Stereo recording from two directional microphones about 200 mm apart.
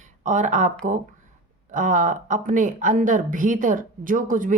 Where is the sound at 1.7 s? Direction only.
40° right (ahead or behind).